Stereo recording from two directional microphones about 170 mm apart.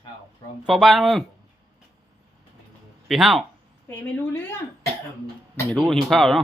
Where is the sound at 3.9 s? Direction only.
10° left (ahead or behind).